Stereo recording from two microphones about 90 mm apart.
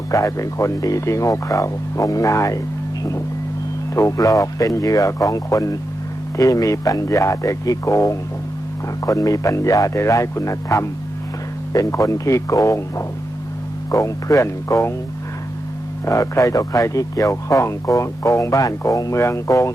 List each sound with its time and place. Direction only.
0.1 s speech: 35° left (ahead or behind)
3.9 s speech: 40° left (ahead or behind)
16.0 s speech: 35° left (ahead or behind)